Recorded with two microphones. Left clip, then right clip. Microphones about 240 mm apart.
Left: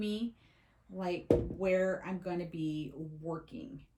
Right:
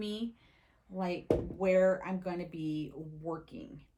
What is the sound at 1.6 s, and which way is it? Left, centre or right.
Speech, right.